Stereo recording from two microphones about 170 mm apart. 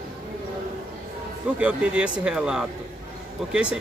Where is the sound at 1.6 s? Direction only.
5° right (ahead or behind).